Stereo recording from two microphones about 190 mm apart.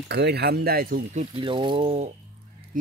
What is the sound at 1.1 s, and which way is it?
Speech, 25° right (ahead or behind).